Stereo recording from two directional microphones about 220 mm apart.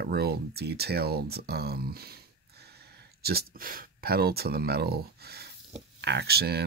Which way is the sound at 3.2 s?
45° right (ahead or behind).